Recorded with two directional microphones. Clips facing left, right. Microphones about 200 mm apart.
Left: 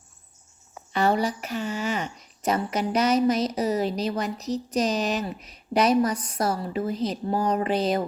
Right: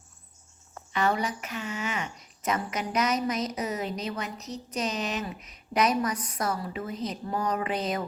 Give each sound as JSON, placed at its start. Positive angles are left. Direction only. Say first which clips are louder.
{"t": 0.9, "sound": "speech", "louder": "left 4 dB", "side_deg": 35}